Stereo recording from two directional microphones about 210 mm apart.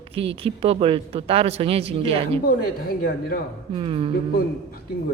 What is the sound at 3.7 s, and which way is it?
Speech, 25° right (ahead or behind).